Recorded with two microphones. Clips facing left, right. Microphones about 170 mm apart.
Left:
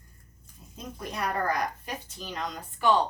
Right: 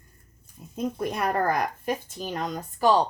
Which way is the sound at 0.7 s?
55° right (ahead or behind).